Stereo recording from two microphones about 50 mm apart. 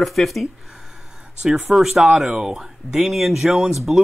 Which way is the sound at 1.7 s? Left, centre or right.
Centre.